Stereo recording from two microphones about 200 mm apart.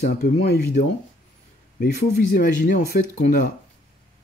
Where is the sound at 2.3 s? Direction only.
45° left (ahead or behind).